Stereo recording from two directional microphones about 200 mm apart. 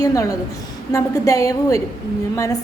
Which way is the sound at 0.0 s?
15° left (ahead or behind).